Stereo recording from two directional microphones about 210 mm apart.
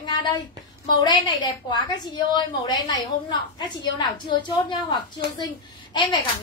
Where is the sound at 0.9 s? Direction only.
20° left (ahead or behind).